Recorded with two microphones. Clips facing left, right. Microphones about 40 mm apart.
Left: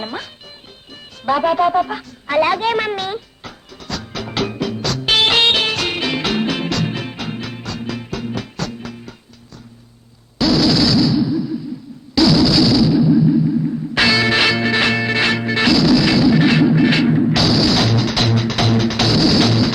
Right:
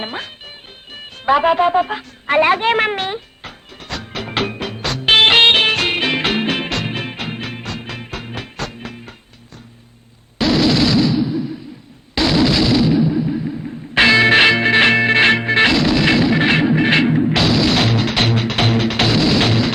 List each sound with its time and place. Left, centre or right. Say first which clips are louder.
0.0 s speech: right 1 dB; right
1.2 s a sound: right 2 dB; right
10.3 s a sound: even; right
13.9 s music: right 5 dB; right
17.1 s music: left 1 dB; centre
17.3 s music: even; right